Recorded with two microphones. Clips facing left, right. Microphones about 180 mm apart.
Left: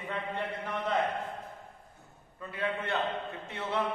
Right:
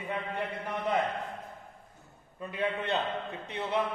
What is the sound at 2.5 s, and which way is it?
Speech, 20° right (ahead or behind).